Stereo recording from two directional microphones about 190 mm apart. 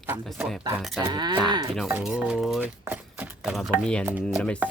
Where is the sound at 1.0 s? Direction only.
20° right (ahead or behind).